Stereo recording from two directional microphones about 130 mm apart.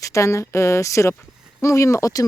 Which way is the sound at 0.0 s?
25° left (ahead or behind).